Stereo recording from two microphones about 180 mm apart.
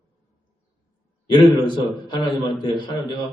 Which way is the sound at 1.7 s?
25° left (ahead or behind).